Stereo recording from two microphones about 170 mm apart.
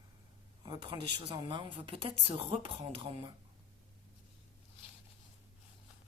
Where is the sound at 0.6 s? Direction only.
25° right (ahead or behind).